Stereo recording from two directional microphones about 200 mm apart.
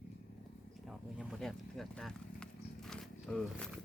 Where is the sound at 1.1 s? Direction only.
Centre (ahead or behind).